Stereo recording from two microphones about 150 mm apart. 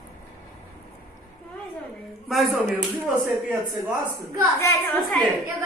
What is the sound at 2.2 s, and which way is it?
Speech, centre (ahead or behind).